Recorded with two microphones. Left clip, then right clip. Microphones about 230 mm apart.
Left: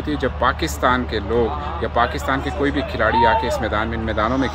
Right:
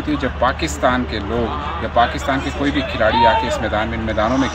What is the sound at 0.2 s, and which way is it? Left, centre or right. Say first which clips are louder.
Speech: even; left.